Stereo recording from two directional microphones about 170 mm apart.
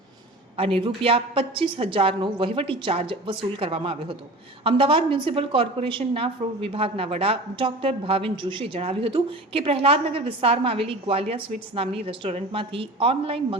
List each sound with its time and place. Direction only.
0.5 s a woman's voice: 35° right (ahead or behind)